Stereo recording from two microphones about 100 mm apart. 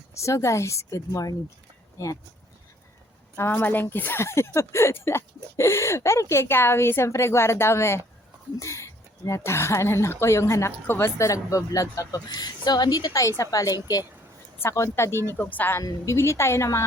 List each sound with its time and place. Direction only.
0.2 s speech: 30° left (ahead or behind)
3.3 s a woman's voice: 25° left (ahead or behind); by 14.0 s 40° left (ahead or behind)
14.6 s a woman's voice: 25° left (ahead or behind)
15.8 s a woman's voice: 35° left (ahead or behind)